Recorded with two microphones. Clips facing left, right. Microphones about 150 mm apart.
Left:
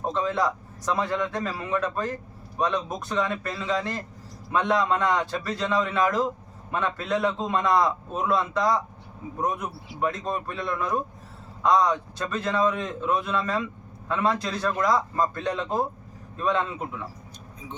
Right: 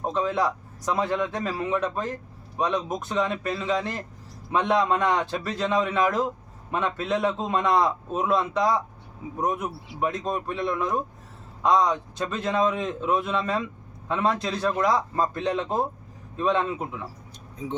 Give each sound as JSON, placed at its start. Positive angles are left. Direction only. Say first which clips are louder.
{"t": 0.0, "sound": "a man's voice", "louder": "right 1 dB", "side_deg": -10}
{"t": 10.0, "sound": "speech", "louder": "right 1 dB", "side_deg": -20}
{"t": 13.0, "sound": "a man's voice", "louder": "right 1 dB", "side_deg": 0}
{"t": 13.2, "sound": "speech", "louder": "even", "side_deg": -20}